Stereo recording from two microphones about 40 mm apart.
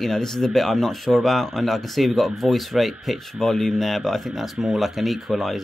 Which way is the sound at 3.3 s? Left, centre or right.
Centre.